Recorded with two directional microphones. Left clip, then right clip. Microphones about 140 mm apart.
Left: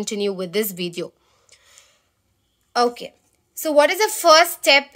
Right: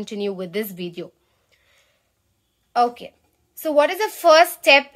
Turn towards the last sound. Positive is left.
turn(degrees=10)  # may be behind; listen again after turning